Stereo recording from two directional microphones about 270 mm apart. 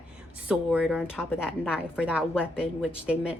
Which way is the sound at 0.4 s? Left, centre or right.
Centre.